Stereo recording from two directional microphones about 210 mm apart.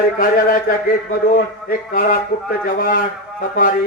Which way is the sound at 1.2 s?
40° left (ahead or behind).